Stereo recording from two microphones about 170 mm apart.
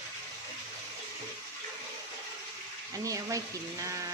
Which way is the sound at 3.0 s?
20° right (ahead or behind).